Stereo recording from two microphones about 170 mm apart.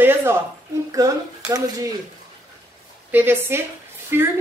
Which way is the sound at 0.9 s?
20° right (ahead or behind).